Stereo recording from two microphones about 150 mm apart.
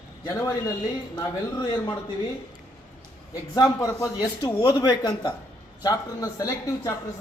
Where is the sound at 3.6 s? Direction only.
25° left (ahead or behind).